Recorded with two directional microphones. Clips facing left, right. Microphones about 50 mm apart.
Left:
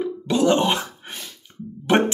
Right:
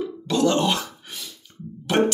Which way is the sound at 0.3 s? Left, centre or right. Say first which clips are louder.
Left 2 dB; left.